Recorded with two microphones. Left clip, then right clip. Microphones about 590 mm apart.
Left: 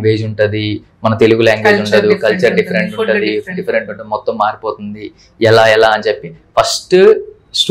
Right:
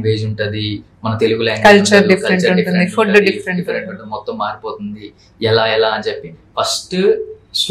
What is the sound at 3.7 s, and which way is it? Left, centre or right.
Speech, left.